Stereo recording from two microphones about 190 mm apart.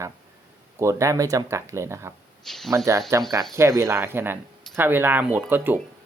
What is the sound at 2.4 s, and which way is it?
Speech, centre (ahead or behind).